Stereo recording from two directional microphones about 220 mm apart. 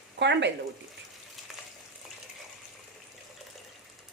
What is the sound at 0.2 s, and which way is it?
Speech, 55° right (ahead or behind).